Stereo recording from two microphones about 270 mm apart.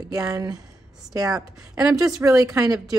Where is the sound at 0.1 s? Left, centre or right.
Centre.